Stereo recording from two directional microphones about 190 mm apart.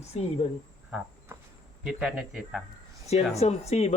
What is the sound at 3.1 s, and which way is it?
Speech, 35° left (ahead or behind).